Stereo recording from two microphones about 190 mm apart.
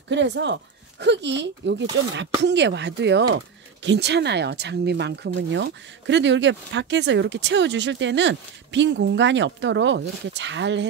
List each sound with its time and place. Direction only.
0.1 s speech: 70° right (ahead or behind)